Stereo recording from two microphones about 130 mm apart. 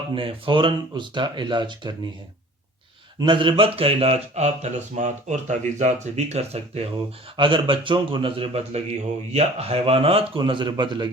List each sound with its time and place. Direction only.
0.1 s speech: 40° right (ahead or behind)
3.2 s a man's voice: 40° right (ahead or behind)
7.3 s a man's voice: 40° right (ahead or behind)